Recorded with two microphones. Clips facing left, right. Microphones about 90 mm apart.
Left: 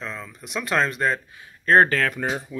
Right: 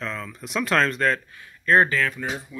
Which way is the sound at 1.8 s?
60° left (ahead or behind).